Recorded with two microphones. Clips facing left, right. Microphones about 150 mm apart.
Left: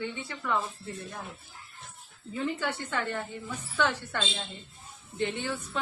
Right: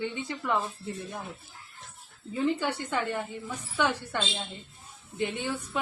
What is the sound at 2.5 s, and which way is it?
A woman's voice, 15° right (ahead or behind).